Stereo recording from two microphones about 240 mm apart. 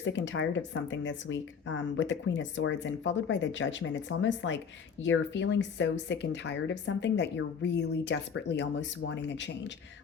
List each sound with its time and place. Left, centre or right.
0.0 s speech: left